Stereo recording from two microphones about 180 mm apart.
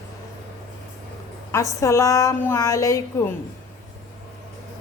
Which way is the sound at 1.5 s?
15° left (ahead or behind).